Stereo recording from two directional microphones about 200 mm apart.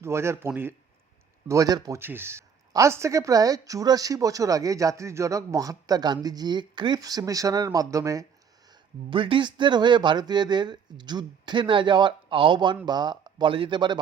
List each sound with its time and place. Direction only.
0.0 s speech: 15° right (ahead or behind)